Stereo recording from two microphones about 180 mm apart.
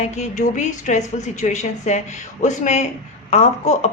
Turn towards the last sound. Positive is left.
turn(degrees=40)  # may be behind; listen again after turning